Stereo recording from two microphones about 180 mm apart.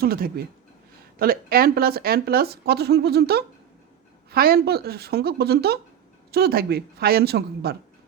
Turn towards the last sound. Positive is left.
turn(degrees=-60)  # may be behind; listen again after turning